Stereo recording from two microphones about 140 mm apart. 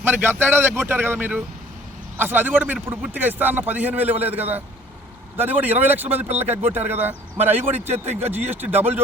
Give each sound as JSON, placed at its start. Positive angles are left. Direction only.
{"t": 0.0, "sound": "a man's voice", "side_deg": -15}